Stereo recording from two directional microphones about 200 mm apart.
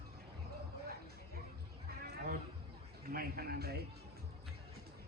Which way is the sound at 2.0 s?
45° right (ahead or behind).